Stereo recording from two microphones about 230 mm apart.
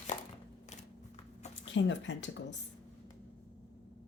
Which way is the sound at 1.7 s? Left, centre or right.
Left.